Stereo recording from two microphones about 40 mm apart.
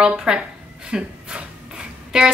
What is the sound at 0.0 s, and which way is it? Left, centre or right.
A woman's voice, centre.